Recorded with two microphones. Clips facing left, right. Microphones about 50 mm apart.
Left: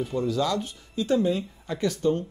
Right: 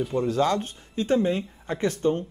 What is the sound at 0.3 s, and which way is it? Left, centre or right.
Speech, right.